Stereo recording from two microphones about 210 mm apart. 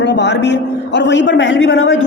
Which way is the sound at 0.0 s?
55° left (ahead or behind).